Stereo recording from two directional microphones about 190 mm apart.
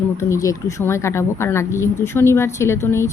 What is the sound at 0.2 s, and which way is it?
Speech, 15° left (ahead or behind).